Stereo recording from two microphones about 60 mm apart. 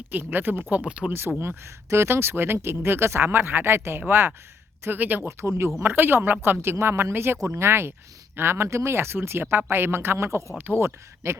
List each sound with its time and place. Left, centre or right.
0.1 s speech: right
0.8 s speech: centre
1.4 s speech: right
5.4 s speech: right
5.8 s speech: right